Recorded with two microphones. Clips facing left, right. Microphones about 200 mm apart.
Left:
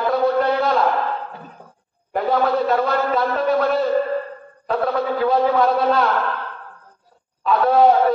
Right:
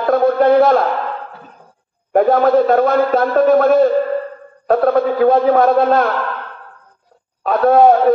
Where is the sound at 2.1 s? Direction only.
50° right (ahead or behind).